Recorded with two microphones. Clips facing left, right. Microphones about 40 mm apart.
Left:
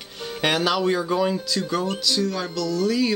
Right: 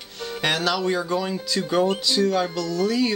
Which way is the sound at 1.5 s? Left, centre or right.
Centre.